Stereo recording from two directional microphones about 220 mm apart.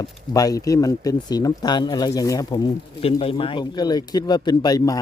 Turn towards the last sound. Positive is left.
turn(degrees=15)  # may be behind; listen again after turning